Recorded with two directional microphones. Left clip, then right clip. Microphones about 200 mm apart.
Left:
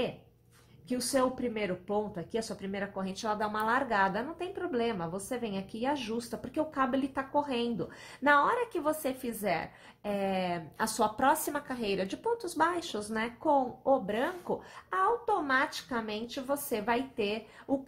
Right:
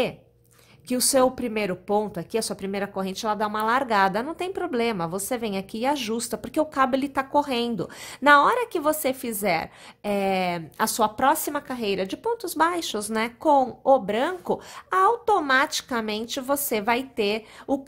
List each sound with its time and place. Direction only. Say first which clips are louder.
0.8 s speech: right 9 dB; 45° right (ahead or behind)